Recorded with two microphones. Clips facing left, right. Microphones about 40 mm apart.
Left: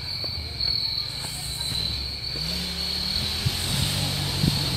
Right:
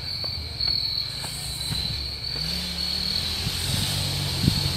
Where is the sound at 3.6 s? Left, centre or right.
Centre.